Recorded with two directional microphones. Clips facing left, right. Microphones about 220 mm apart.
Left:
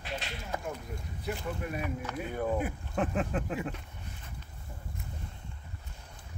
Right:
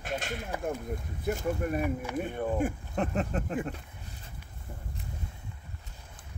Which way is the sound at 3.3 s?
40° right (ahead or behind).